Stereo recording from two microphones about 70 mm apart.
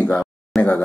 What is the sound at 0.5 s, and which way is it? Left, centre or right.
Speech, centre.